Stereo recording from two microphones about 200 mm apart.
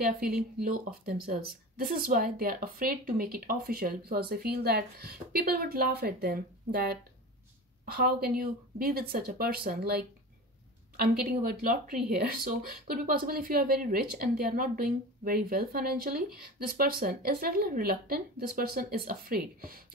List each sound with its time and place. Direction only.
0.7 s a woman's voice: 45° right (ahead or behind)